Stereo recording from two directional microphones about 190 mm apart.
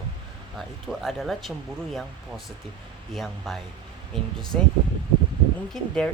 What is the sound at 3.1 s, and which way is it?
Speech, centre (ahead or behind).